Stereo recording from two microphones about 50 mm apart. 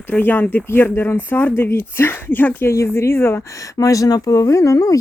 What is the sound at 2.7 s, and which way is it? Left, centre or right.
Speech, left.